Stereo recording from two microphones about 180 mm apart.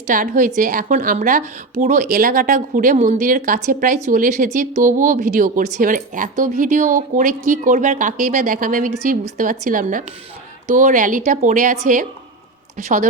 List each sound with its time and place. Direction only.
0.1 s speech: 45° right (ahead or behind)